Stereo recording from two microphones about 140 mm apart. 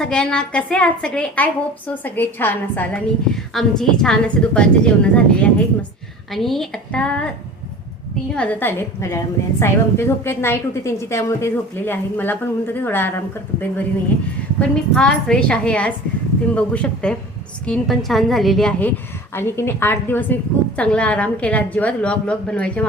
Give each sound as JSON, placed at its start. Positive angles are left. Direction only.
{"t": 0.0, "sound": "a woman's voice", "side_deg": 5}
{"t": 8.4, "sound": "a woman's voice", "side_deg": 10}